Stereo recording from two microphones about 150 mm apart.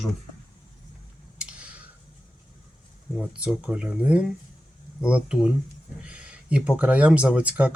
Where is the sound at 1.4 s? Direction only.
5° right (ahead or behind).